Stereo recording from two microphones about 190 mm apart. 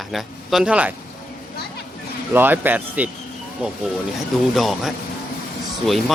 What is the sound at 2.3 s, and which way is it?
Speech, 10° right (ahead or behind).